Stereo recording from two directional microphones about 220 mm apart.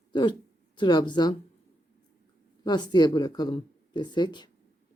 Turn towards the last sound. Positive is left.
turn(degrees=20)  # may be behind; listen again after turning